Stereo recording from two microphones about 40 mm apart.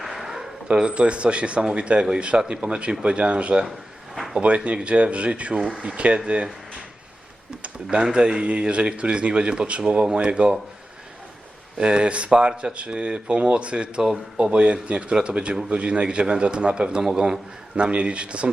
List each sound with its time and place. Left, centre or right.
0.0 s a sound: centre
0.7 s speech: right
4.1 s a sound: centre
4.4 s speech: right
7.6 s speech: right
11.8 s speech: right